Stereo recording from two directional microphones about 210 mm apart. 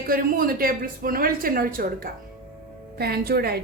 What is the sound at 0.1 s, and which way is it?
A woman's voice, 45° right (ahead or behind).